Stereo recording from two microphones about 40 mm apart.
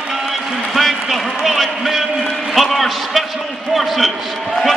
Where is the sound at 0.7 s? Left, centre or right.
Centre.